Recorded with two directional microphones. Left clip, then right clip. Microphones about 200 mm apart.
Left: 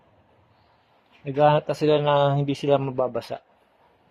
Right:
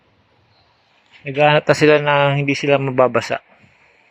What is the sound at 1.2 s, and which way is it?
Speech, 15° right (ahead or behind).